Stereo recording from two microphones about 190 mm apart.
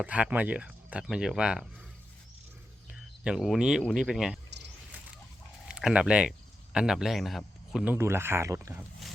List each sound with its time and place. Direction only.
0.0 s speech: 5° right (ahead or behind)
2.9 s speech: 5° right (ahead or behind)
5.6 s speech: 5° right (ahead or behind)